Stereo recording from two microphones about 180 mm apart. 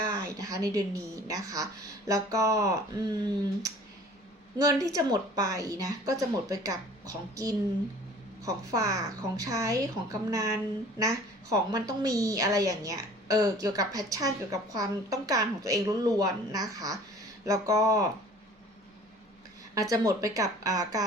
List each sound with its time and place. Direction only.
0.2 s a woman's voice: 20° right (ahead or behind)
4.5 s a woman's voice: 20° right (ahead or behind)
19.7 s a woman's voice: 20° right (ahead or behind)